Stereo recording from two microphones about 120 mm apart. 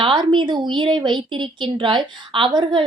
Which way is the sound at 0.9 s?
40° right (ahead or behind).